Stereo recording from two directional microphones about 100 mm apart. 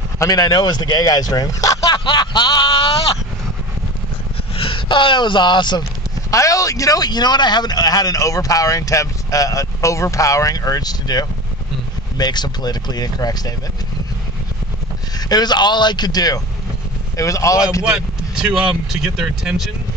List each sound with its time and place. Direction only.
0.2 s a man's voice: 40° left (ahead or behind)
1.9 s speech: 50° left (ahead or behind)
4.6 s speech: 60° left (ahead or behind)
6.3 s a man's voice: 35° left (ahead or behind)
15.1 s a man's voice: 40° left (ahead or behind)
17.8 s speech: 5° right (ahead or behind)